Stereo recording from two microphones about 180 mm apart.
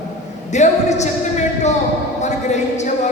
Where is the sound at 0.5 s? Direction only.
40° left (ahead or behind).